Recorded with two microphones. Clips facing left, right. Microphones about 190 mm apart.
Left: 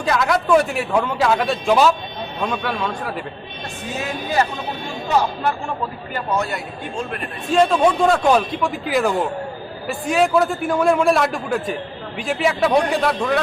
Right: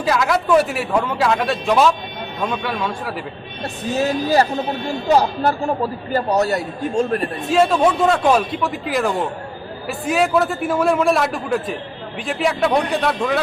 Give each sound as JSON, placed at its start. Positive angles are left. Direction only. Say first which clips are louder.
{"t": 0.0, "sound": "a man's voice", "louder": "right 1 dB", "side_deg": 0}
{"t": 4.0, "sound": "speech", "louder": "right 5 dB", "side_deg": -35}
{"t": 7.5, "sound": "a man's voice", "louder": "even", "side_deg": -5}